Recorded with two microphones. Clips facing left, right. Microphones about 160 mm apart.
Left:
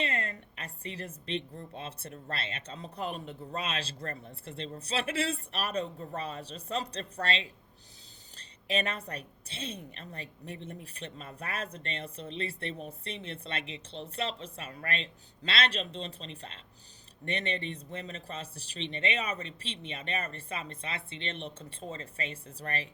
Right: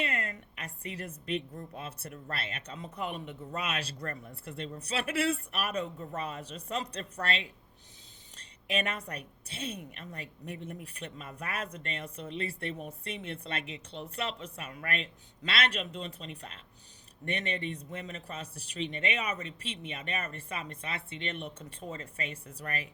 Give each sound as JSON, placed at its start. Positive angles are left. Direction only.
{"t": 0.0, "sound": "a woman's voice", "side_deg": 30}